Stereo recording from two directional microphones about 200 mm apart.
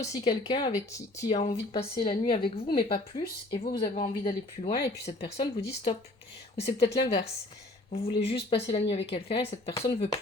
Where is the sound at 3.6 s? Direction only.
50° left (ahead or behind).